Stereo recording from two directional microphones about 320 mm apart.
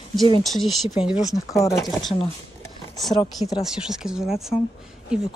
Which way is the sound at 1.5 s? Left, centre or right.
Centre.